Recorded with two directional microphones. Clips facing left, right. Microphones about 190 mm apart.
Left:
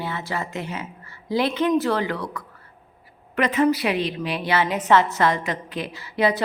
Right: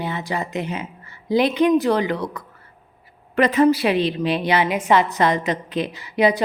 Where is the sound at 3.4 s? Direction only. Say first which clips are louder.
Right 4 dB; 35° right (ahead or behind).